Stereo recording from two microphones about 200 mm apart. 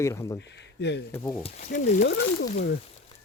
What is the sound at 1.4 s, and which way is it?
Speech, 35° left (ahead or behind).